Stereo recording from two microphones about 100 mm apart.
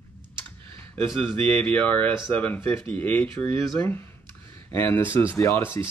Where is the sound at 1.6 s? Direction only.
15° left (ahead or behind).